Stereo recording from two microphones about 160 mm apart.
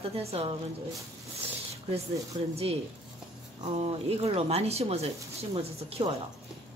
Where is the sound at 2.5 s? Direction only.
40° right (ahead or behind).